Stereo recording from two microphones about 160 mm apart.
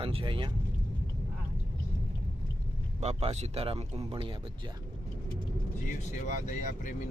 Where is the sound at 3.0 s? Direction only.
40° right (ahead or behind).